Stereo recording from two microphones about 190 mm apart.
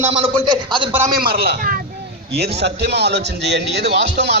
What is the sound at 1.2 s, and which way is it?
A man's voice, 55° right (ahead or behind).